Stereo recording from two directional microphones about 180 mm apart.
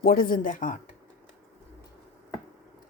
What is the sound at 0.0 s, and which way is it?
Speech, 55° left (ahead or behind).